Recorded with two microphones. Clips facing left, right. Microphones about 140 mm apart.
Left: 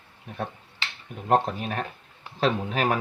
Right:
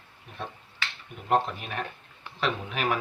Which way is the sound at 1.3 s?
40° left (ahead or behind).